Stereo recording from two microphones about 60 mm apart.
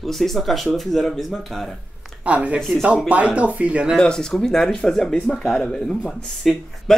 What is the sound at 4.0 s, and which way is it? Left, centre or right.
Speech, centre.